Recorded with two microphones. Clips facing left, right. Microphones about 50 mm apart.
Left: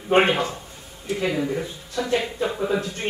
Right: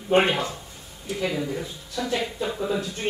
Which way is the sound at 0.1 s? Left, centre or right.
Left.